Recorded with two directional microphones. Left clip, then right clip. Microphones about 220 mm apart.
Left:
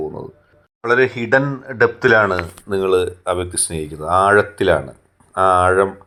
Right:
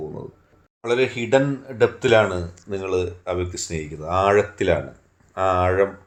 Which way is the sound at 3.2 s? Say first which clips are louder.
Left 5 dB; 20° left (ahead or behind).